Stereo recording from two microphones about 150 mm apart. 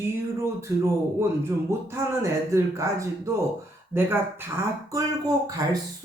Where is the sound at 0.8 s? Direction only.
15° right (ahead or behind).